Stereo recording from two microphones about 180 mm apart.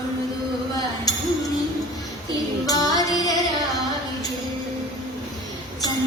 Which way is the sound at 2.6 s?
20° left (ahead or behind).